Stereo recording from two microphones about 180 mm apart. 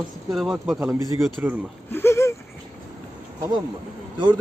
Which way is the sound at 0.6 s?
15° right (ahead or behind).